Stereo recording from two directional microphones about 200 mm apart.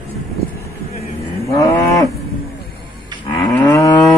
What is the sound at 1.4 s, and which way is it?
Cattle, 15° left (ahead or behind).